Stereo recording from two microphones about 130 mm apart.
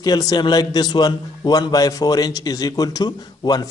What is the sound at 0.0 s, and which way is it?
A man's voice, 30° left (ahead or behind).